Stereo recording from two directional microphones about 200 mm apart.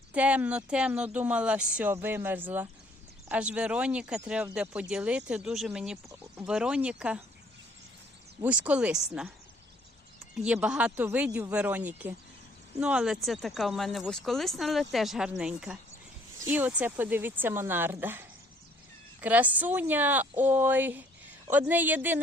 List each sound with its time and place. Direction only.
0.1 s speech: 5° right (ahead or behind)
8.4 s speech: 5° right (ahead or behind)
10.3 s speech: 5° right (ahead or behind)